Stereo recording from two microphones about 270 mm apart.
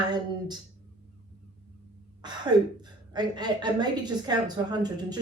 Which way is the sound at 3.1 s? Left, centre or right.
Centre.